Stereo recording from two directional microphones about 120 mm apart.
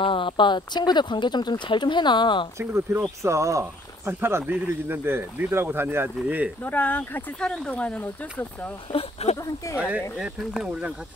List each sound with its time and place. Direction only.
0.0 s speech: 45° left (ahead or behind)
2.6 s speech: 20° right (ahead or behind)
6.6 s speech: 15° left (ahead or behind)
8.9 s speech: 60° left (ahead or behind)
9.8 s speech: 10° right (ahead or behind)